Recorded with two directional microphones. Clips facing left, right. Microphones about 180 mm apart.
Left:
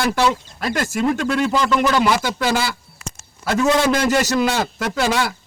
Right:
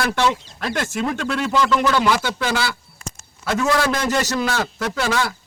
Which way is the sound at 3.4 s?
20° left (ahead or behind).